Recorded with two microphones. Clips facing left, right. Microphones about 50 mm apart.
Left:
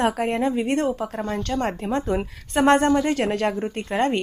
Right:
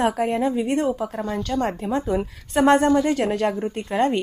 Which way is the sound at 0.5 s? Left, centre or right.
Left.